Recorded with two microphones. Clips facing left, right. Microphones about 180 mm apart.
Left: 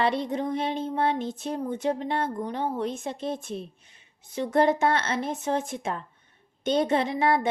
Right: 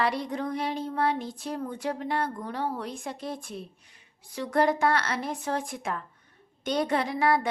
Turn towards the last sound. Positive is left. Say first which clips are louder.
# left 2 dB
turn(degrees=25)  # may be behind; listen again after turning